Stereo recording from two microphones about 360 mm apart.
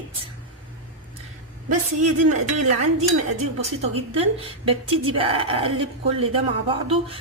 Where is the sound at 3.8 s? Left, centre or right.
Centre.